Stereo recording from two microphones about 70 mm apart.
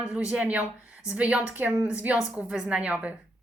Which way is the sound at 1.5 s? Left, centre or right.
Right.